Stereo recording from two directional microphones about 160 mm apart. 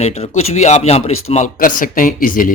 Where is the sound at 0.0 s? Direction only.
40° left (ahead or behind).